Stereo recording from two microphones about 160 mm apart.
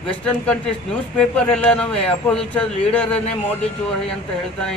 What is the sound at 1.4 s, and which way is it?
A man's voice, 5° left (ahead or behind).